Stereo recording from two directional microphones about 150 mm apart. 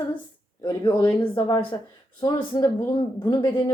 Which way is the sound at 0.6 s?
30° left (ahead or behind).